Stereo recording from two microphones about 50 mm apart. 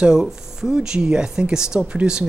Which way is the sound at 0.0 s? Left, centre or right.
Centre.